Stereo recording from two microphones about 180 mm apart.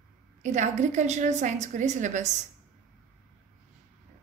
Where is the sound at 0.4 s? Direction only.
40° right (ahead or behind).